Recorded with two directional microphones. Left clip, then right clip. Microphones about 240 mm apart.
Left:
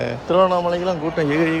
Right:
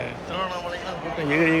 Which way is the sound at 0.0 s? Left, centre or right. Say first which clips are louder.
Left 12 dB; left.